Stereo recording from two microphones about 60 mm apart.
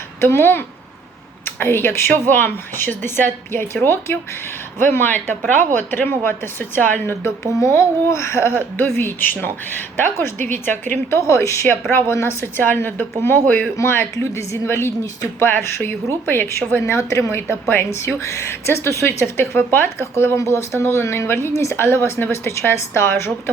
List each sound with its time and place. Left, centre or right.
0.2 s speech: left
7.5 s speech: left
9.0 s speech: left
11.1 s speech: left
13.7 s speech: left
16.8 s speech: left
19.2 s speech: left